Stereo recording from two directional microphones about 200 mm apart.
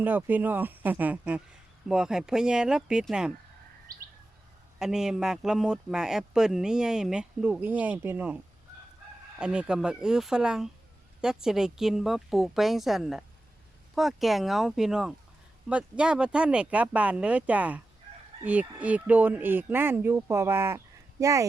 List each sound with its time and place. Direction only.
0.0 s speech: 10° right (ahead or behind)
3.9 s bird: 45° right (ahead or behind)
4.8 s speech: 5° right (ahead or behind)
9.4 s speech: 5° right (ahead or behind)